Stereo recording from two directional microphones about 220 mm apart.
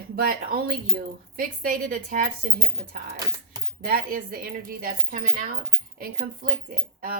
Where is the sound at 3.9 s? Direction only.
40° right (ahead or behind).